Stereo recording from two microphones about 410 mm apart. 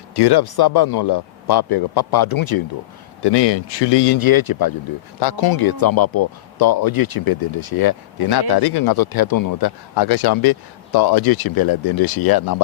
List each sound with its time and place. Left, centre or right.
0.2 s speech: left
3.2 s speech: left